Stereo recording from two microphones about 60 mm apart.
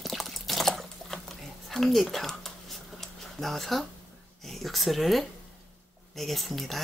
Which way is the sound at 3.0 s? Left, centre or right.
Centre.